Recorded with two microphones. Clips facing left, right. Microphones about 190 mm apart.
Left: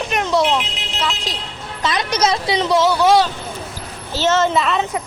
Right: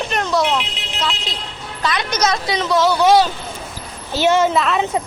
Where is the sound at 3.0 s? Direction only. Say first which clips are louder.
Right 2 dB; centre (ahead or behind).